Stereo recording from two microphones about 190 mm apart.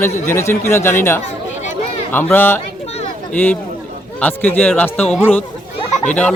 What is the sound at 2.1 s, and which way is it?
Speech, 10° left (ahead or behind).